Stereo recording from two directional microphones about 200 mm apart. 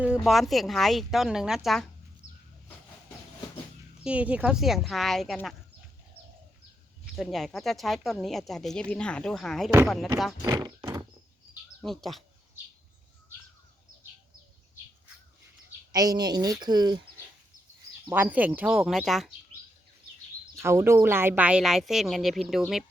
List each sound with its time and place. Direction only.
0.0 s speech: 5° right (ahead or behind)
2.2 s a sound: 25° right (ahead or behind)
4.0 s speech: 5° right (ahead or behind)
7.2 s speech: centre (ahead or behind)
10.4 s speech: 20° right (ahead or behind)
11.8 s speech: centre (ahead or behind)
15.9 s speech: 20° right (ahead or behind)
18.1 s speech: 10° right (ahead or behind)
20.6 s speech: 15° right (ahead or behind)